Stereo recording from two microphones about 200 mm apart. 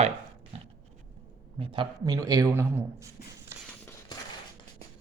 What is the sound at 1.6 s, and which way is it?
A man's voice, 25° right (ahead or behind).